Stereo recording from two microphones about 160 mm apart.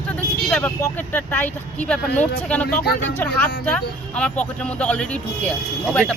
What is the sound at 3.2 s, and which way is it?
Speech, 15° left (ahead or behind).